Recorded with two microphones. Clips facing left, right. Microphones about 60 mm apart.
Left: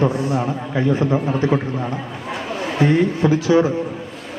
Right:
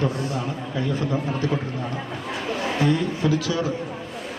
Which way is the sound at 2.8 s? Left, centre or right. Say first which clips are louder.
Left 7 dB; left.